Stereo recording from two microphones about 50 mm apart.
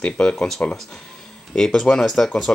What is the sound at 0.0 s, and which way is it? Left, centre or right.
Speech, centre.